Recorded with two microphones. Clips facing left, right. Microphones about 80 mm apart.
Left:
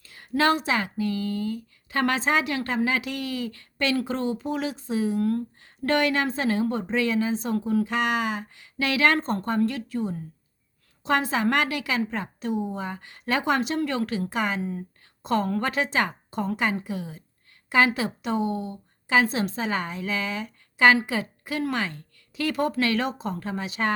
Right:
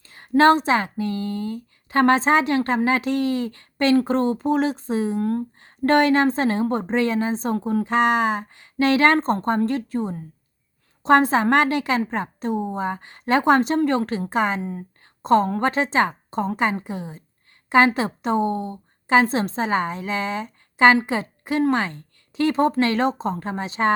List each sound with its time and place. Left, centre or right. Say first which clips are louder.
0.0 s speech: right 7 dB; right